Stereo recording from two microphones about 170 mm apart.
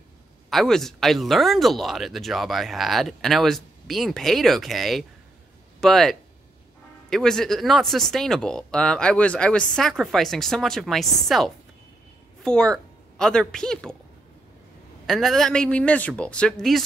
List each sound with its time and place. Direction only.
0.5 s a woman's voice: centre (ahead or behind)
15.0 s speech: centre (ahead or behind)